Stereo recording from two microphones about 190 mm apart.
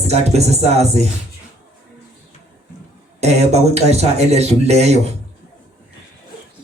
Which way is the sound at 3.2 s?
35° right (ahead or behind).